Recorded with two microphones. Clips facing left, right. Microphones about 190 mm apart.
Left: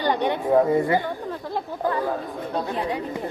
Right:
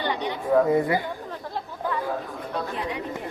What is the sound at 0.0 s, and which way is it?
Chatter, 50° left (ahead or behind).